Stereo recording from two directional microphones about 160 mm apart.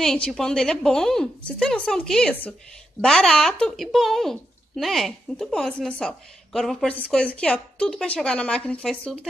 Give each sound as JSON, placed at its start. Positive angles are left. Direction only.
{"t": 0.0, "sound": "speech", "side_deg": 5}